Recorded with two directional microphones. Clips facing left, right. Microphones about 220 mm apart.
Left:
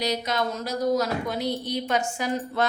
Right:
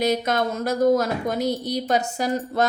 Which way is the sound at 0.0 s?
50° right (ahead or behind).